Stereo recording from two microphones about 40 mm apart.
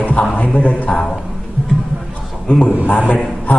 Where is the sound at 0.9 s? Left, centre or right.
Centre.